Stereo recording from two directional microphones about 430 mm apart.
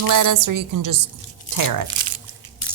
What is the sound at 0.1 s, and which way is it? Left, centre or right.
Speech, right.